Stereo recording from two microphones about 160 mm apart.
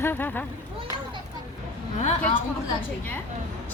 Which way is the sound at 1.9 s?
45° left (ahead or behind).